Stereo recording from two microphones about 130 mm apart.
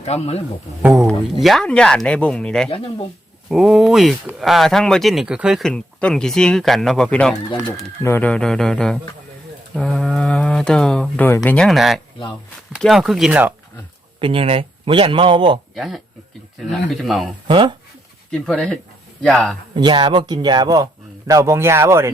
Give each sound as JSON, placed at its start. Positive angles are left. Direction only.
{"t": 0.0, "sound": "a man's voice", "side_deg": 55}
{"t": 0.8, "sound": "speech", "side_deg": -10}
{"t": 1.0, "sound": "speech", "side_deg": 0}
{"t": 5.6, "sound": "speech", "side_deg": 5}
{"t": 14.2, "sound": "speech", "side_deg": -40}
{"t": 15.7, "sound": "speech", "side_deg": 0}
{"t": 17.5, "sound": "speech", "side_deg": -40}
{"t": 18.3, "sound": "speech", "side_deg": 5}
{"t": 19.7, "sound": "speech", "side_deg": -35}